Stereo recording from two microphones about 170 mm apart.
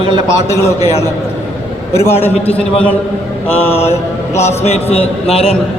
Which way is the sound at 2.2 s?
10° left (ahead or behind).